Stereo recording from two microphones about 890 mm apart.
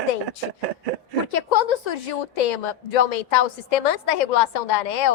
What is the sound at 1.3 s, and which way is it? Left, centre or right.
A woman's voice, left.